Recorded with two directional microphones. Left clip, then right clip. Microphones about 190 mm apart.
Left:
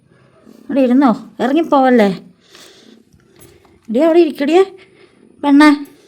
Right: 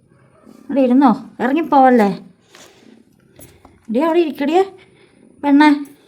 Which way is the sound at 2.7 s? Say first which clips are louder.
Left 3 dB; 5° right (ahead or behind).